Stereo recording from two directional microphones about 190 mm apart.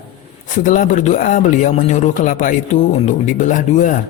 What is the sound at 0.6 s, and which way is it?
Speech, 40° left (ahead or behind).